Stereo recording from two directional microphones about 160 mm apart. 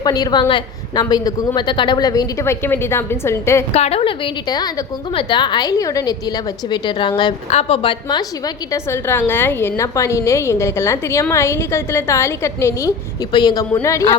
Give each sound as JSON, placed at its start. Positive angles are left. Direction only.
{"t": 0.0, "sound": "a woman's voice", "side_deg": 25}
{"t": 3.7, "sound": "a woman's voice", "side_deg": 40}
{"t": 4.4, "sound": "a woman's voice", "side_deg": 25}
{"t": 8.7, "sound": "a woman's voice", "side_deg": 15}